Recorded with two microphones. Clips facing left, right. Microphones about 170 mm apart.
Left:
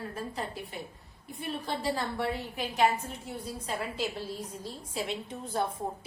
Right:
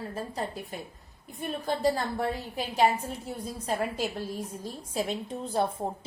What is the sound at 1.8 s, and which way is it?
A woman's voice, 40° right (ahead or behind).